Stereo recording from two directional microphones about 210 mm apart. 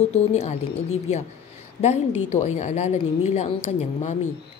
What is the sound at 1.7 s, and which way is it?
A woman's voice, 30° left (ahead or behind).